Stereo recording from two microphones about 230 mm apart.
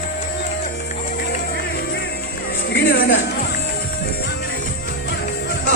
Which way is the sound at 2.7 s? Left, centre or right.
Left.